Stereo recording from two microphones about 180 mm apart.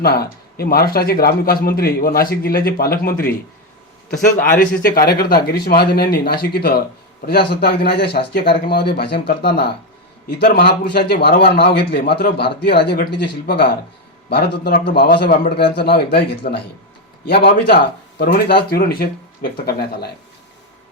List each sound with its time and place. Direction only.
0.0 s a man's voice: 60° left (ahead or behind)
4.8 s a man's voice: 55° left (ahead or behind)